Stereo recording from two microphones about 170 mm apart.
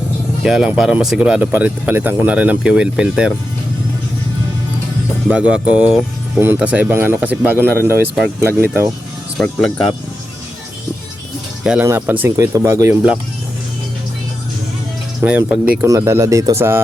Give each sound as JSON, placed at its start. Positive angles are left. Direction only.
{"t": 0.4, "sound": "speech", "side_deg": -5}
{"t": 5.3, "sound": "speech", "side_deg": -5}
{"t": 9.4, "sound": "speech", "side_deg": 5}
{"t": 11.6, "sound": "speech", "side_deg": -5}
{"t": 15.2, "sound": "speech", "side_deg": -5}